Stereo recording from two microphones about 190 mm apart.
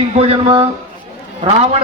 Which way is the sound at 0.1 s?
30° right (ahead or behind).